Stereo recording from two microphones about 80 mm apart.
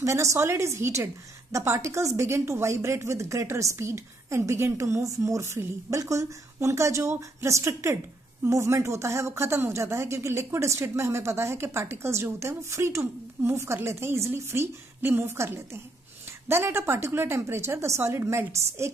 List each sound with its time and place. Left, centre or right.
0.0 s speech: right